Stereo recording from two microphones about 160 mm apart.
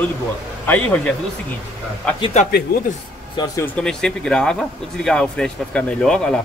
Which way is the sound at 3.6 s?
5° left (ahead or behind).